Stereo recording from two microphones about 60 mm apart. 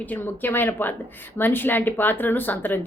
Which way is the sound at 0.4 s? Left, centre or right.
Left.